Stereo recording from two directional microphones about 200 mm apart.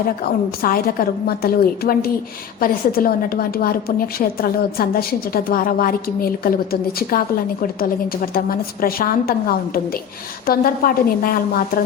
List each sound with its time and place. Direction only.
0.6 s a woman's voice: 45° left (ahead or behind)
10.4 s a woman's voice: 45° left (ahead or behind)